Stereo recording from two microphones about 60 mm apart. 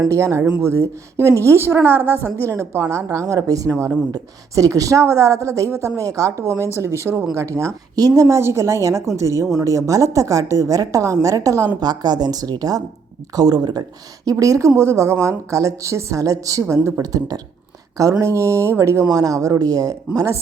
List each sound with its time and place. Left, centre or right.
0.1 s a woman's voice: right
2.0 s a woman's voice: left
2.5 s a woman's voice: right
3.1 s a woman's voice: right
5.0 s a woman's voice: right
12.3 s speech: right
14.3 s a woman's voice: right
14.8 s a woman's voice: right
16.6 s a woman's voice: right
17.0 s speech: right
18.2 s a woman's voice: right
19.0 s speech: right